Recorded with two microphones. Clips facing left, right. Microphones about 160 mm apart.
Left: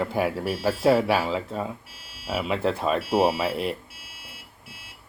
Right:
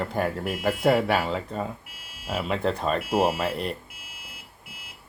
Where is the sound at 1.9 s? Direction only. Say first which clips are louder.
Even; 30° left (ahead or behind).